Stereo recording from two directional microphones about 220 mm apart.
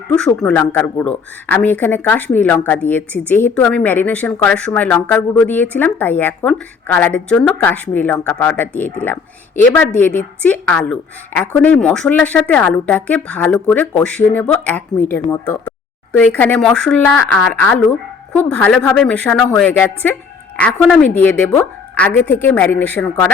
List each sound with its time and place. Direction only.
0.2 s a woman's voice: 5° left (ahead or behind)